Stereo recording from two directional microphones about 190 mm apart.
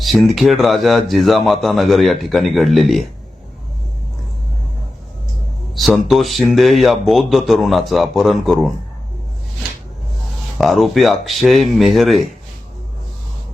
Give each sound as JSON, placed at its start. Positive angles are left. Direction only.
{"t": 0.0, "sound": "speech", "side_deg": 0}
{"t": 5.7, "sound": "speech", "side_deg": 0}
{"t": 10.6, "sound": "speech", "side_deg": 0}